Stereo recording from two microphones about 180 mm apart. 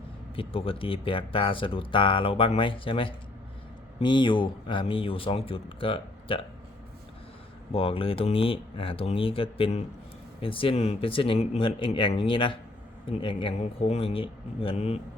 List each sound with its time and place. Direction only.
0.3 s speech: 30° left (ahead or behind)
7.7 s speech: 30° left (ahead or behind)